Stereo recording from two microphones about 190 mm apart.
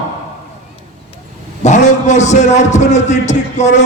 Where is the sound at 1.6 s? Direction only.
40° left (ahead or behind).